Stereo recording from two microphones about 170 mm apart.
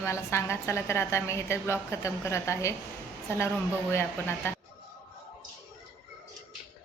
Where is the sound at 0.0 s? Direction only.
15° left (ahead or behind).